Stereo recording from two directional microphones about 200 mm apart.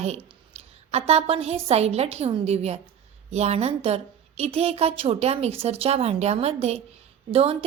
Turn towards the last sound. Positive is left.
turn(degrees=-30)  # may be behind; listen again after turning